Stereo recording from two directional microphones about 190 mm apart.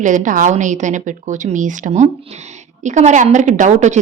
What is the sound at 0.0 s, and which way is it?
A woman's voice, 40° right (ahead or behind).